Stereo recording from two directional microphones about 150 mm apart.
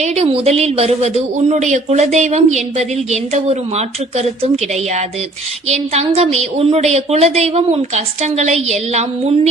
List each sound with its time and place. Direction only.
0.0 s speech: 45° right (ahead or behind)